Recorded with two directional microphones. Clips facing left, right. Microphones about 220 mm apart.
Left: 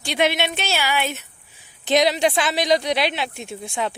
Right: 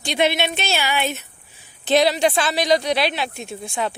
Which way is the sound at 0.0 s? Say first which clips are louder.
Right 1 dB; 10° left (ahead or behind).